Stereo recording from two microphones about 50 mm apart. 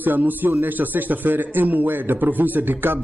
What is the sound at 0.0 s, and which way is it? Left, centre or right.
A man's voice, right.